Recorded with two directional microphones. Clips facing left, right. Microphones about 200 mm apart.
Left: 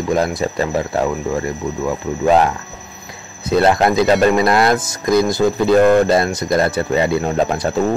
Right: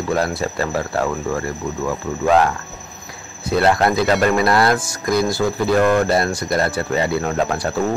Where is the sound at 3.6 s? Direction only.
20° left (ahead or behind).